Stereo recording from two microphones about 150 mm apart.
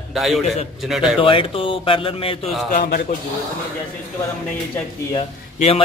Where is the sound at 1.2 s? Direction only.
35° left (ahead or behind).